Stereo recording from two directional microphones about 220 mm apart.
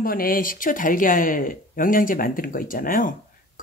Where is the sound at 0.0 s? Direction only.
40° left (ahead or behind).